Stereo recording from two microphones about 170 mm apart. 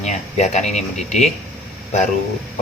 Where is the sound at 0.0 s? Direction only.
45° left (ahead or behind).